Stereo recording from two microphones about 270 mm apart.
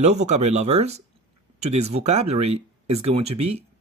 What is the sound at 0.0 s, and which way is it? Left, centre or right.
Speech, right.